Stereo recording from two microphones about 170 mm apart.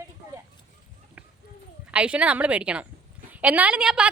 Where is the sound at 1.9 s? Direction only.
5° right (ahead or behind).